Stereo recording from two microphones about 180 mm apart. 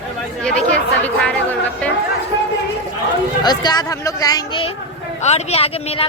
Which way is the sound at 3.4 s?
25° left (ahead or behind).